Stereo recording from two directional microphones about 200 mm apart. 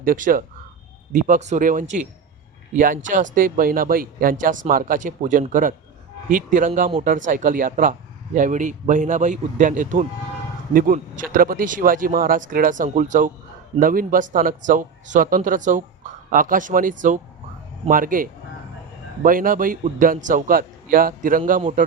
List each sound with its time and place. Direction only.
0.0 s speech: 45° right (ahead or behind)